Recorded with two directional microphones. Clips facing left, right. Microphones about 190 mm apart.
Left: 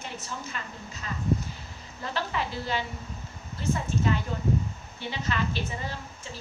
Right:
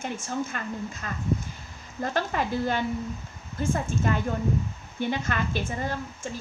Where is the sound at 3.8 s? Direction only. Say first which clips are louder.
Right 1 dB; 50° right (ahead or behind).